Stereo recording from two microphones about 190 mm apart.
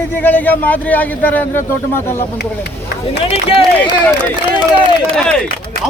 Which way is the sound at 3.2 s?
30° left (ahead or behind).